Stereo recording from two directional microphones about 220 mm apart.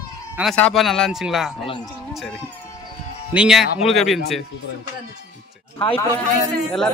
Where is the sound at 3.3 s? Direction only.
Centre (ahead or behind).